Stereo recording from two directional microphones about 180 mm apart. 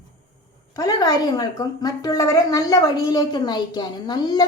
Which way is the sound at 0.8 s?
20° left (ahead or behind).